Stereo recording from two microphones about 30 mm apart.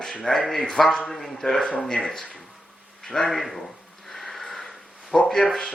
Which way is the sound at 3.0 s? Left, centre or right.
Centre.